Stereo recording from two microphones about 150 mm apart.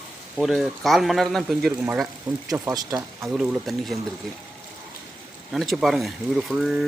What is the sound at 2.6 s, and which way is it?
Speech, 20° right (ahead or behind).